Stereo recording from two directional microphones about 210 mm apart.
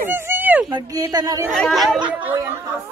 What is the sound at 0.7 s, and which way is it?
Speech, 20° right (ahead or behind).